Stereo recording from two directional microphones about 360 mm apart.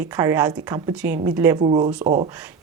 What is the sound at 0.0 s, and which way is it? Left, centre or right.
A woman's voice, centre.